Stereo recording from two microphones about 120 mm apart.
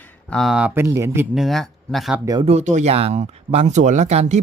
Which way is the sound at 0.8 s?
25° right (ahead or behind).